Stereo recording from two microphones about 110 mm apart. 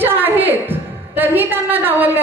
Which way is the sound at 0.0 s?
20° right (ahead or behind).